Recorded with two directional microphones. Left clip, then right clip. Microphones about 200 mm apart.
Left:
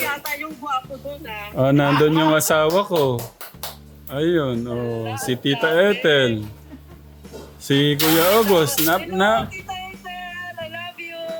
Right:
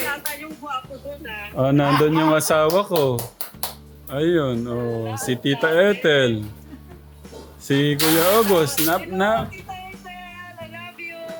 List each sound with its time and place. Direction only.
0.6 s a sound: 35° left (ahead or behind)
1.5 s speech: 15° left (ahead or behind)
7.7 s speech: 10° left (ahead or behind)
10.6 s music: 25° left (ahead or behind)